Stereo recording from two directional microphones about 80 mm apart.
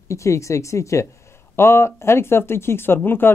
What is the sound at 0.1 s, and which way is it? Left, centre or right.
Speech, left.